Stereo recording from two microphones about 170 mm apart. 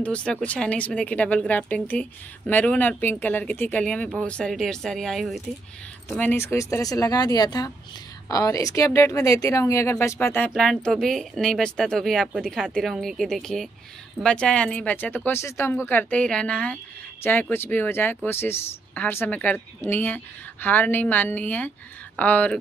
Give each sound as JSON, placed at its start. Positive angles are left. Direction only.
{"t": 0.0, "sound": "speech", "side_deg": 5}
{"t": 10.5, "sound": "speech", "side_deg": 0}